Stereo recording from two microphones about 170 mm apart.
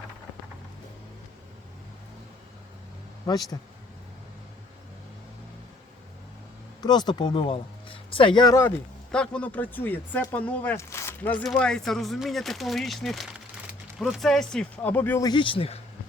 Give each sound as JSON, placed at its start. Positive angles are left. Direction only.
{"t": 6.8, "sound": "speech", "side_deg": 25}
{"t": 9.1, "sound": "speech", "side_deg": 5}
{"t": 15.2, "sound": "speech", "side_deg": 25}